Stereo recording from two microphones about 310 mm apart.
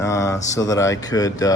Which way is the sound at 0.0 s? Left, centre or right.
Centre.